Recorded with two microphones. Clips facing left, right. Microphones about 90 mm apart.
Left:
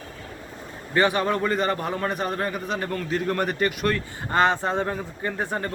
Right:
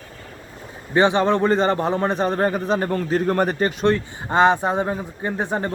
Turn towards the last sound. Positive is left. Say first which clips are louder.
# right 4 dB
turn(degrees=-20)  # may be behind; listen again after turning